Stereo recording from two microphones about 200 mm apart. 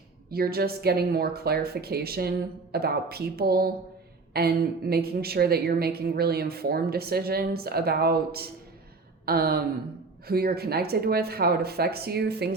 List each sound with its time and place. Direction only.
0.3 s a woman's voice: 50° right (ahead or behind)